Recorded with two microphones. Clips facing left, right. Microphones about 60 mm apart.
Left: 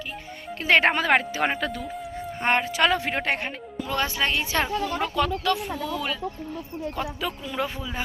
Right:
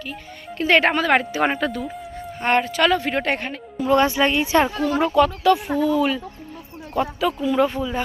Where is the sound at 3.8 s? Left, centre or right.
Right.